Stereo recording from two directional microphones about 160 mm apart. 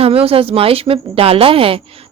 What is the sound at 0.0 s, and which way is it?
A woman's voice, 35° right (ahead or behind).